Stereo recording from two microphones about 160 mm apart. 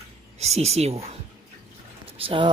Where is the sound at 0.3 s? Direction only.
40° right (ahead or behind).